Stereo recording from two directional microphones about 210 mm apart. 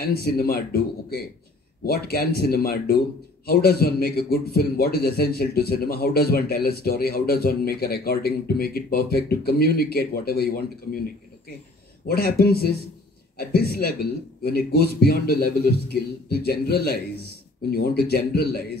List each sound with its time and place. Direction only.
0.0 s speech: 50° left (ahead or behind)
12.1 s speech: 50° left (ahead or behind)